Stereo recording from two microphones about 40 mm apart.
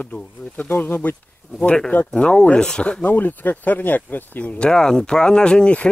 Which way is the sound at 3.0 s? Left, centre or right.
Left.